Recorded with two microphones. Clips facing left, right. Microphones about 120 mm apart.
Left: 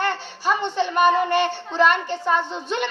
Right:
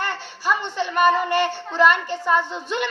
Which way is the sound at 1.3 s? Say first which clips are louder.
Even; 5° right (ahead or behind).